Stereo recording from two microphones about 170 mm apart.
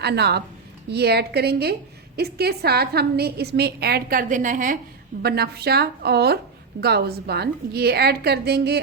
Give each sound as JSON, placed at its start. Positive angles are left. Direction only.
{"t": 0.0, "sound": "a woman's voice", "side_deg": -75}
{"t": 5.2, "sound": "a woman's voice", "side_deg": -70}